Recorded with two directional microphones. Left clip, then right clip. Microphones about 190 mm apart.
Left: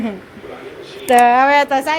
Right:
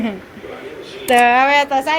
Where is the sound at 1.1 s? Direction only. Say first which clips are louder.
Left 1 dB; 25° left (ahead or behind).